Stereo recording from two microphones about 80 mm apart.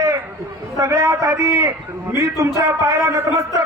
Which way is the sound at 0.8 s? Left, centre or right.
Right.